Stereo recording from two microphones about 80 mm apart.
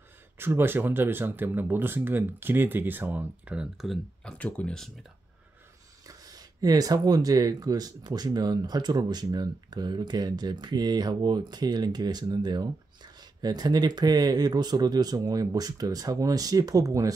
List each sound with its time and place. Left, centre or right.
0.4 s speech: right
3.7 s speech: centre
4.2 s speech: centre
6.0 s speech: right